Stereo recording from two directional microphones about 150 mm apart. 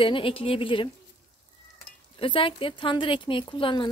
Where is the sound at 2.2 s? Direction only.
35° left (ahead or behind).